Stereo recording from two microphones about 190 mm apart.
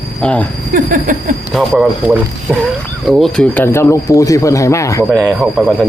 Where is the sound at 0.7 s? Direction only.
45° right (ahead or behind).